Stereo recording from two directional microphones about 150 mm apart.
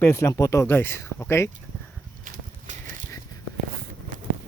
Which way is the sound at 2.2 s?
60° right (ahead or behind).